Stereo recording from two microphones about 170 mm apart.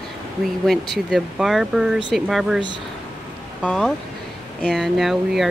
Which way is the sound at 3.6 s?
5° left (ahead or behind).